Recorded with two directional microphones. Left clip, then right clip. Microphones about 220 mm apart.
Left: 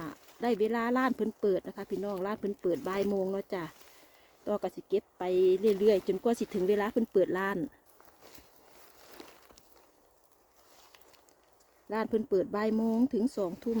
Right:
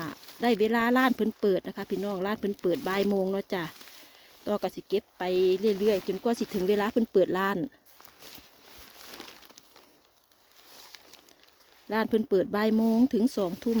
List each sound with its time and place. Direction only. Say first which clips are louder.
0.0 s speech: right 5 dB; 45° right (ahead or behind)
6.1 s speech: right 1 dB; 15° right (ahead or behind)
11.9 s speech: right 4 dB; 40° right (ahead or behind)